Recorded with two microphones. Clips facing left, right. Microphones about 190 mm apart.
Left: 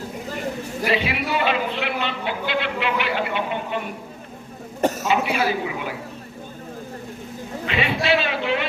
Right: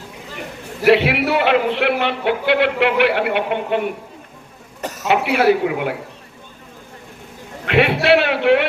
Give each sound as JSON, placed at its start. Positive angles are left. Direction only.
{"t": 0.9, "sound": "a man's voice", "side_deg": -65}
{"t": 5.0, "sound": "a man's voice", "side_deg": -65}
{"t": 7.6, "sound": "a man's voice", "side_deg": -65}